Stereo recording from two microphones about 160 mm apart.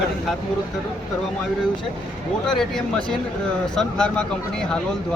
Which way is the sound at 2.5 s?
Centre (ahead or behind).